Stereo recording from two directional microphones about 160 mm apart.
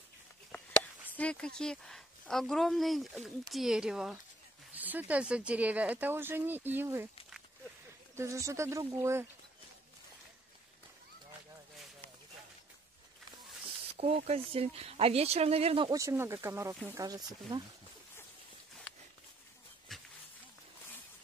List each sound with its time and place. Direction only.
1.1 s speech: 5° left (ahead or behind); by 7.1 s 15° right (ahead or behind)
8.2 s speech: 20° right (ahead or behind)
13.9 s speech: 40° right (ahead or behind)
15.9 s speech: 20° right (ahead or behind)
19.9 s a sound: centre (ahead or behind)